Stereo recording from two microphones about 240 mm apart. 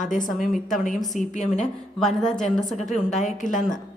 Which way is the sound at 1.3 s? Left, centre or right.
Left.